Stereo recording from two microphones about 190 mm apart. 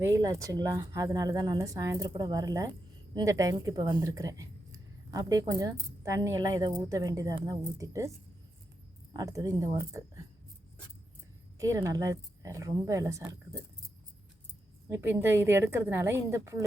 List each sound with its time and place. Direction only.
0.0 s speech: 15° right (ahead or behind)
9.1 s speech: 20° right (ahead or behind)
11.5 s speech: 15° right (ahead or behind)
14.8 s speech: 15° right (ahead or behind)